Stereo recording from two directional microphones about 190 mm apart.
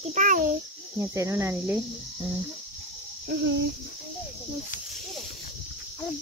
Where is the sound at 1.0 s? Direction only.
15° right (ahead or behind).